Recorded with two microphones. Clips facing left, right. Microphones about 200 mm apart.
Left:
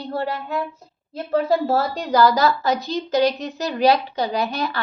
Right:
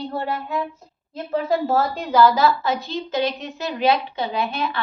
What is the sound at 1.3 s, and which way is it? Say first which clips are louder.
A woman's voice: left 2 dB; 35° left (ahead or behind).